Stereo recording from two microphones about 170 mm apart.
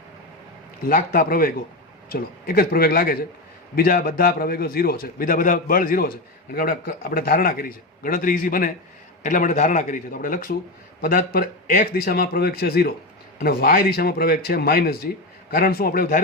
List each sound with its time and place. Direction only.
0.9 s a man's voice: 55° left (ahead or behind)